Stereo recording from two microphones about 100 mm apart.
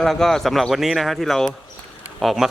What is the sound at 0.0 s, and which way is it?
Speech, 5° left (ahead or behind).